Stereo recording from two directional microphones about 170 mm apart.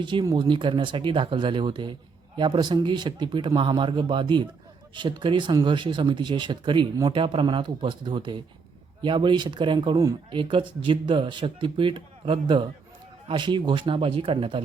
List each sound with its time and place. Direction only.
0.0 s speech: 25° right (ahead or behind)